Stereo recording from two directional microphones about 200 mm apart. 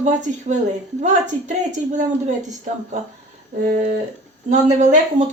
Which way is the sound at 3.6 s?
35° right (ahead or behind).